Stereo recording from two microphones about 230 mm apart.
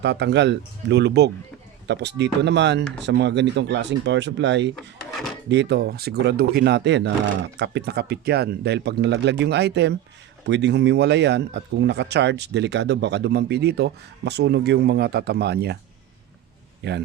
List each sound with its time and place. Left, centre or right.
0.0 s speech: right
16.8 s speech: right